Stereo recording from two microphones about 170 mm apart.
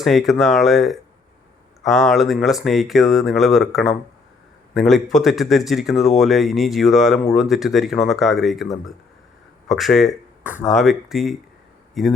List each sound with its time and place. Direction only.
0.0 s speech: centre (ahead or behind)